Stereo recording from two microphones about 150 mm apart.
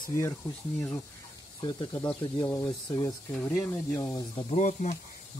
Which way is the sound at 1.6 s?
25° left (ahead or behind).